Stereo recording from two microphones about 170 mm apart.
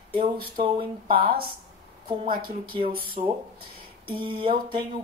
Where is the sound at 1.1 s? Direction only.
60° right (ahead or behind).